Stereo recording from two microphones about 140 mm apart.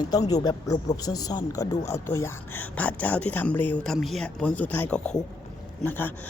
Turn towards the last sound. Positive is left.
turn(degrees=15)  # may be behind; listen again after turning